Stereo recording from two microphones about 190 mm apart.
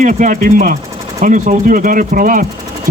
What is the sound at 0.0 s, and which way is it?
Speech, 40° right (ahead or behind).